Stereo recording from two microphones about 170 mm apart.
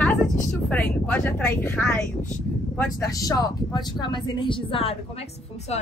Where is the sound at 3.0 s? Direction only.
20° left (ahead or behind).